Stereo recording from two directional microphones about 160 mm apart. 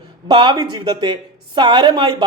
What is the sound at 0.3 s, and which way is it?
A woman's voice, 30° right (ahead or behind).